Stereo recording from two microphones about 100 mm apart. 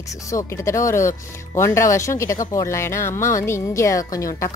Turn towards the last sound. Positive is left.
turn(degrees=35)  # may be behind; listen again after turning